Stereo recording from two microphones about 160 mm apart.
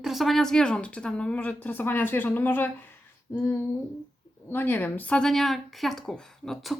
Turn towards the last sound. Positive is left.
turn(degrees=0)  # may be behind; listen again after turning